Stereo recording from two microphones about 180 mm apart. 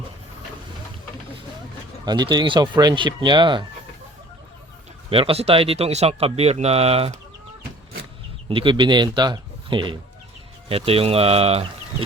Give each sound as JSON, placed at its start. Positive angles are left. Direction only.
{"t": 2.0, "sound": "speech", "side_deg": -25}
{"t": 5.0, "sound": "speech", "side_deg": -30}
{"t": 8.4, "sound": "speech", "side_deg": -30}